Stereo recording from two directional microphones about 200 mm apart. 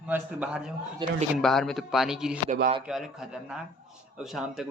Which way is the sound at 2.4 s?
40° right (ahead or behind).